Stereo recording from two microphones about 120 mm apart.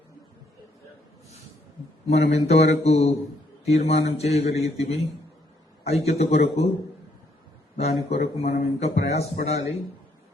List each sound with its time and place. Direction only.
2.0 s a man's voice: 60° left (ahead or behind)
8.1 s a man's voice: 65° left (ahead or behind)